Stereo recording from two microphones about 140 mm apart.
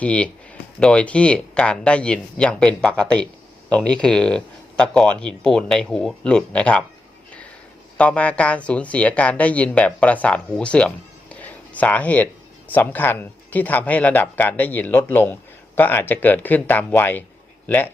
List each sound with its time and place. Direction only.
0.0 s speech: 10° left (ahead or behind)
7.9 s speech: 10° left (ahead or behind)